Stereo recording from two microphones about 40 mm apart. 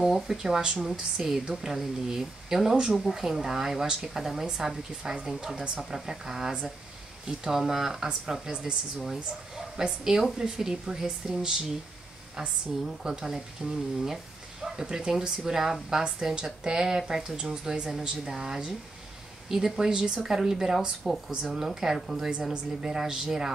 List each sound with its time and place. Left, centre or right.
0.1 s speech: centre
2.9 s speech: centre
19.8 s speech: centre
21.0 s speech: centre
21.5 s speech: centre